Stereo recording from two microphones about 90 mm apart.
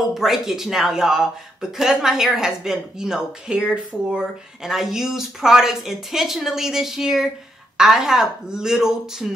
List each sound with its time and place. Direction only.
0.1 s speech: 5° right (ahead or behind)